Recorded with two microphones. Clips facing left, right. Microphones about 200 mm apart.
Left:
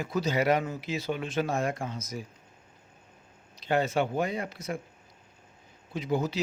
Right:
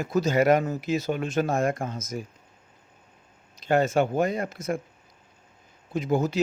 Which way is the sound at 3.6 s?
45° right (ahead or behind).